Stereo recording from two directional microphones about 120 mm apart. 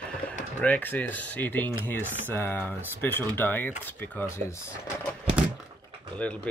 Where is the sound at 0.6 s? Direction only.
15° left (ahead or behind).